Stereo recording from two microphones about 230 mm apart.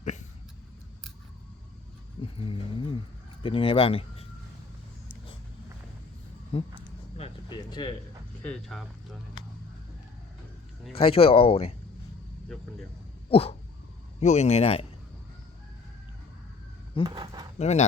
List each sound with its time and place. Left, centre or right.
0.0 s a sound: left
2.2 s speech: left
6.5 s speech: left
7.2 s a sound: centre
8.4 s speech: centre
10.9 s speech: left
13.3 s speech: left
17.0 s speech: centre
17.6 s speech: left